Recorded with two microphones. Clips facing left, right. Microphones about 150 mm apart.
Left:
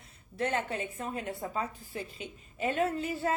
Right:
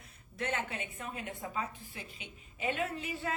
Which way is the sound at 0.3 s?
35° left (ahead or behind).